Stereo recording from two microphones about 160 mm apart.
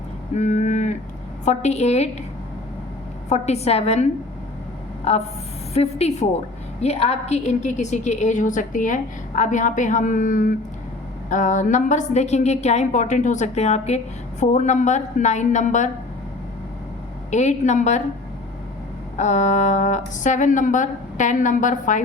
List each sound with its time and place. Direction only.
0.3 s a sound: 50° left (ahead or behind)
1.5 s a woman's voice: 45° left (ahead or behind)
3.2 s a woman's voice: 45° left (ahead or behind)
17.3 s a woman's voice: 45° left (ahead or behind)
19.1 s a woman's voice: 50° left (ahead or behind)